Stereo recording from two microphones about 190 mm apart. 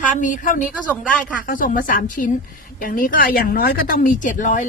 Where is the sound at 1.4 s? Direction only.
45° left (ahead or behind).